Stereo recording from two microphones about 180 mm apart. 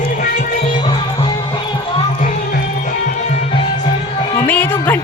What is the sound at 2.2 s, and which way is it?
Music, 50° left (ahead or behind).